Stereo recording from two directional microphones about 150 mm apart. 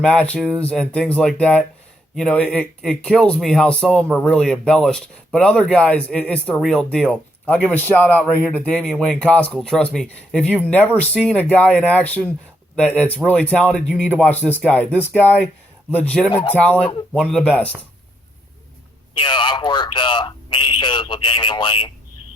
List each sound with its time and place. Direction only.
0.0 s a man's voice: 10° left (ahead or behind)
19.1 s speech: 35° left (ahead or behind)